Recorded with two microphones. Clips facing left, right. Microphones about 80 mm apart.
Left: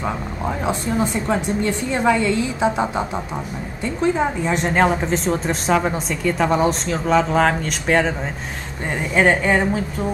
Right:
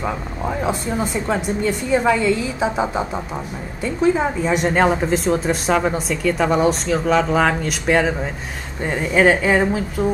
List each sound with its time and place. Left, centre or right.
0.0 s a woman's voice: centre